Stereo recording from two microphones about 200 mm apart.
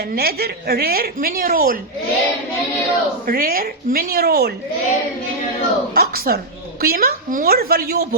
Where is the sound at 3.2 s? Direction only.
45° right (ahead or behind).